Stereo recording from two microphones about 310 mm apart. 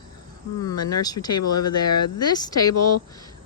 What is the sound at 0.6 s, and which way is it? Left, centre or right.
Speech, centre.